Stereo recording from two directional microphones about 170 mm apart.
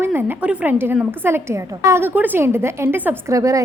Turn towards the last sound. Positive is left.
turn(degrees=-20)  # may be behind; listen again after turning